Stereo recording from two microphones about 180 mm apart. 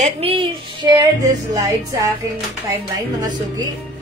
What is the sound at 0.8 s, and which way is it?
Speech, 20° right (ahead or behind).